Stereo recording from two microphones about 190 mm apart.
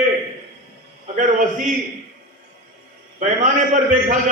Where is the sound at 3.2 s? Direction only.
40° right (ahead or behind).